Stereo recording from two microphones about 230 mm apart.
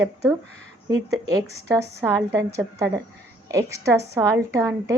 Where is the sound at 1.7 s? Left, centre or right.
Centre.